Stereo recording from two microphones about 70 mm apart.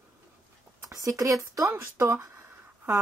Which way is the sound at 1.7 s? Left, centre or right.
Right.